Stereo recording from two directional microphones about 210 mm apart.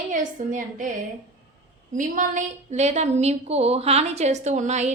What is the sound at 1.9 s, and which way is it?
A woman's voice, 35° right (ahead or behind).